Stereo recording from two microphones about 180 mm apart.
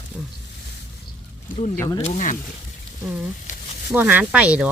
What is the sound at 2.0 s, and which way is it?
Speech, 30° left (ahead or behind).